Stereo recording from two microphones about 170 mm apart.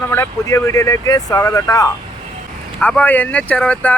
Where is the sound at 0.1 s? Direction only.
15° left (ahead or behind).